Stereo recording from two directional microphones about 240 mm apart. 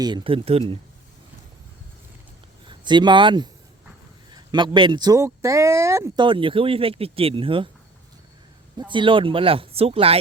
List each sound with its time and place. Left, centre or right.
0.0 s speech: centre
2.6 s speech: centre
8.8 s speech: centre